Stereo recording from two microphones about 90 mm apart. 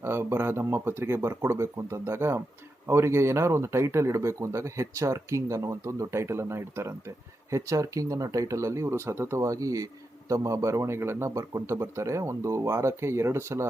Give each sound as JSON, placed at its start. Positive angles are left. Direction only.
{"t": 0.0, "sound": "speech", "side_deg": -25}